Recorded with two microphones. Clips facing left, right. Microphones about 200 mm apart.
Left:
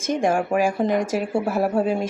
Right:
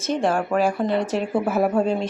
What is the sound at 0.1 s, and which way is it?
Speech, 10° left (ahead or behind).